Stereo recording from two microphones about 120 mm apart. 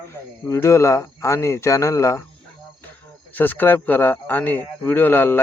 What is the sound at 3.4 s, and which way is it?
Speech, 15° left (ahead or behind).